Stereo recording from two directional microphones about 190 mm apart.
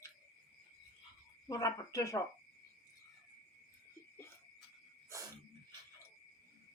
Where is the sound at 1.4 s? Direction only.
15° left (ahead or behind).